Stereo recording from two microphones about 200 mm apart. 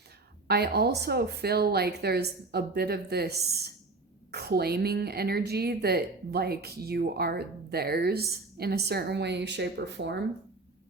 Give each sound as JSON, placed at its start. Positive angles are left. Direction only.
{"t": 0.4, "sound": "a woman's voice", "side_deg": -50}